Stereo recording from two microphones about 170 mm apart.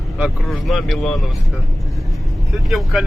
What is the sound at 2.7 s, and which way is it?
Speech, centre (ahead or behind).